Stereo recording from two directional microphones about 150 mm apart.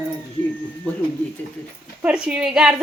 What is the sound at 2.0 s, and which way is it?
Speech, 5° right (ahead or behind).